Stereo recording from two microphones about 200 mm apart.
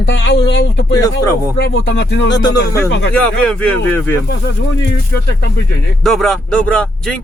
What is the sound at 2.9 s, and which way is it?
Speech, 60° left (ahead or behind).